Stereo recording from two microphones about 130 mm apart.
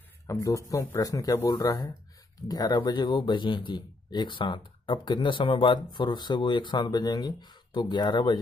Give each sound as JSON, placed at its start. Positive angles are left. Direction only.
{"t": 0.3, "sound": "speech", "side_deg": 25}